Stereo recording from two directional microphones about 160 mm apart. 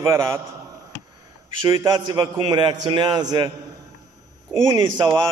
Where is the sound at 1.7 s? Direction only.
25° right (ahead or behind).